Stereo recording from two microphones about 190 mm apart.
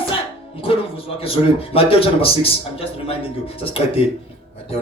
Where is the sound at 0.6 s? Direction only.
30° left (ahead or behind).